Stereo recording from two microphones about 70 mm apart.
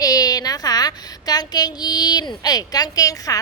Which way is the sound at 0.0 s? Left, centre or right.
Left.